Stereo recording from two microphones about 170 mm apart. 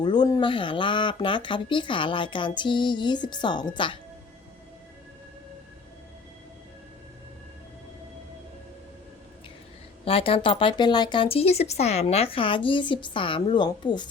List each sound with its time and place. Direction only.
0.0 s speech: 25° left (ahead or behind)
10.0 s speech: 30° left (ahead or behind)